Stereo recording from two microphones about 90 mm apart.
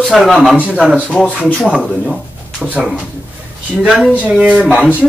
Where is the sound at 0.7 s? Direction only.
10° right (ahead or behind).